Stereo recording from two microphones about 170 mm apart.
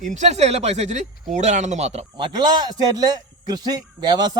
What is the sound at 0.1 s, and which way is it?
A man's voice, 40° right (ahead or behind).